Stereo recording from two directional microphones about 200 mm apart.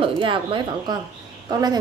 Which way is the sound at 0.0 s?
25° right (ahead or behind).